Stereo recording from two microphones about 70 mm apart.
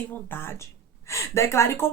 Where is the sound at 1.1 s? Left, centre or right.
Left.